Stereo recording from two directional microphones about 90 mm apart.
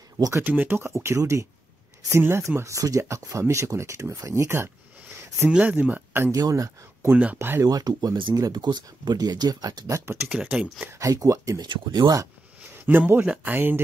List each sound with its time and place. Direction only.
0.3 s speech: 20° right (ahead or behind)
0.8 s speech: 30° right (ahead or behind)
5.5 s speech: 15° right (ahead or behind)
6.3 s speech: 40° right (ahead or behind)
7.3 s speech: 25° right (ahead or behind)
7.6 s speech: 45° right (ahead or behind)
10.2 s speech: 10° right (ahead or behind)
10.9 s speech: 35° right (ahead or behind)
11.7 s speech: 50° right (ahead or behind)
12.8 s speech: 20° right (ahead or behind)